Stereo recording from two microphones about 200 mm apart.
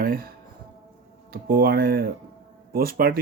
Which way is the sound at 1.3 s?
50° right (ahead or behind).